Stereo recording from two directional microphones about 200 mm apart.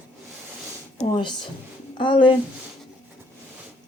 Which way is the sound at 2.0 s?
25° left (ahead or behind).